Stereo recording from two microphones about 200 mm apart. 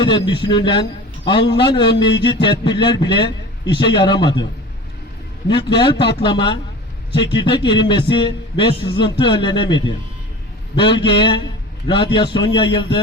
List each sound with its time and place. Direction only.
0.0 s a man's voice: 25° left (ahead or behind)
5.5 s a man's voice: 25° left (ahead or behind)